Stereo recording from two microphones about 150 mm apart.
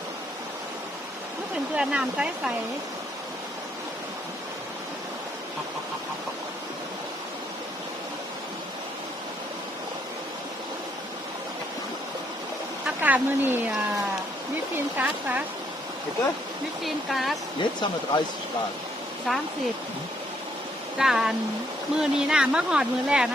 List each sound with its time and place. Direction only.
1.7 s speech: 5° right (ahead or behind)
13.0 s speech: 10° right (ahead or behind)
14.8 s speech: 10° right (ahead or behind)
16.8 s speech: centre (ahead or behind)
17.6 s speech: 30° left (ahead or behind)
21.0 s speech: centre (ahead or behind)